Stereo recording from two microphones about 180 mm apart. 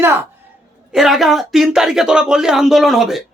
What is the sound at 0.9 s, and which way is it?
Speech, centre (ahead or behind).